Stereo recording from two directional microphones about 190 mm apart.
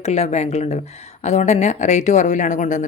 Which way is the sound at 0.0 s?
35° left (ahead or behind).